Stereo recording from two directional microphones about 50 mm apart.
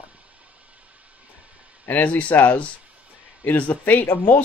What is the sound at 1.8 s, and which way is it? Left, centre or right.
Speech, left.